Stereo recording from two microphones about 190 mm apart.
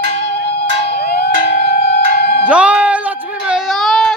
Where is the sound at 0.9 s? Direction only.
55° left (ahead or behind).